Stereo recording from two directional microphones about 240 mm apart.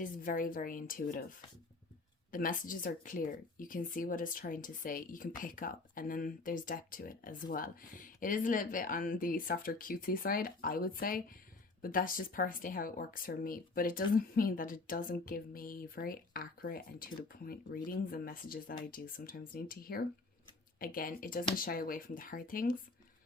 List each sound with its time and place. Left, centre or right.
0.0 s speech: left
2.3 s speech: left